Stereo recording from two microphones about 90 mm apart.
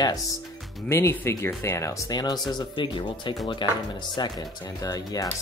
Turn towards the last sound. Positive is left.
turn(degrees=40)  # may be behind; listen again after turning